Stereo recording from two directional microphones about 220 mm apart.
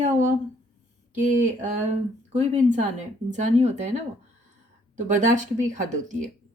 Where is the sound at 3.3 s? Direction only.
35° right (ahead or behind).